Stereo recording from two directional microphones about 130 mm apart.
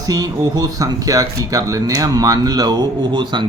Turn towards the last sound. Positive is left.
turn(degrees=-35)  # may be behind; listen again after turning